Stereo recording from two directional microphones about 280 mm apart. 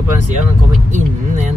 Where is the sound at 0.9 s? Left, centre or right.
Right.